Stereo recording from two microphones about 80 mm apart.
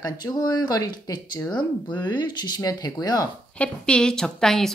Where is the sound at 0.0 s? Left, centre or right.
Left.